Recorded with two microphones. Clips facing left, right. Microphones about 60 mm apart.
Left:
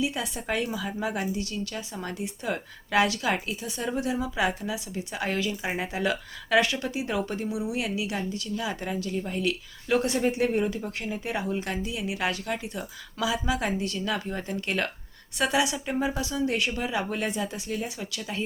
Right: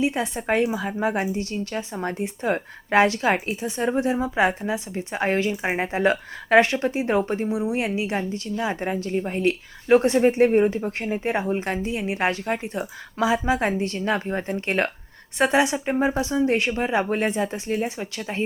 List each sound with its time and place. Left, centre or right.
0.0 s speech: right